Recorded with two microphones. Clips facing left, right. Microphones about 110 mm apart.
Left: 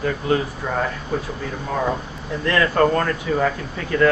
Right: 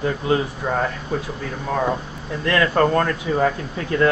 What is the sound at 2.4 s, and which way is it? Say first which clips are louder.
Speech: even; 15° right (ahead or behind).